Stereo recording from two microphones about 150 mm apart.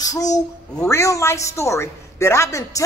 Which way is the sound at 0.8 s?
20° left (ahead or behind).